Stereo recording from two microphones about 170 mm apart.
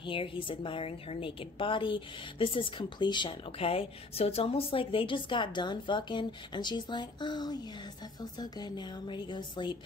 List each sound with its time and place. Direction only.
0.0 s a woman's voice: 30° left (ahead or behind)